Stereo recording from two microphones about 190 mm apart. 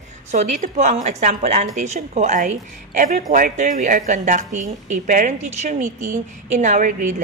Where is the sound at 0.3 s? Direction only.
40° right (ahead or behind).